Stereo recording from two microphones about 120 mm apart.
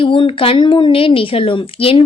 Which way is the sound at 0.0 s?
45° left (ahead or behind).